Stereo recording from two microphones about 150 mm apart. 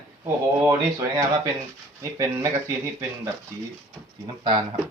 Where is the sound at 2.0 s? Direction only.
20° right (ahead or behind).